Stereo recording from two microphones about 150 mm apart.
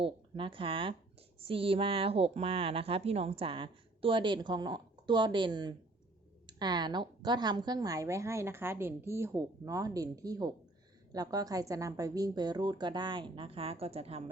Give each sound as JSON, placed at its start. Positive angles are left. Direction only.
{"t": 0.0, "sound": "a woman's voice", "side_deg": -35}